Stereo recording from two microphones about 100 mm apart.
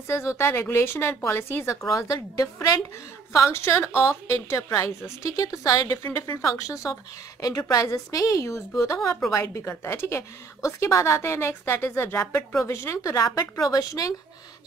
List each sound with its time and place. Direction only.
0.3 s speech: 30° left (ahead or behind)
3.3 s a woman's voice: 25° left (ahead or behind)
6.0 s a woman's voice: 20° left (ahead or behind); by 14.0 s 35° left (ahead or behind)